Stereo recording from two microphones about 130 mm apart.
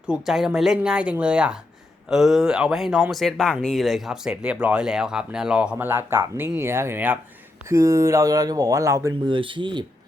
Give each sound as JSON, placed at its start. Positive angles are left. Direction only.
{"t": 0.1, "sound": "speech", "side_deg": -5}
{"t": 9.2, "sound": "speech", "side_deg": -40}